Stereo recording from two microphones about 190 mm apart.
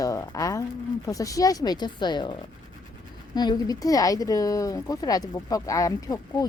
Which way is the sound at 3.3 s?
20° left (ahead or behind).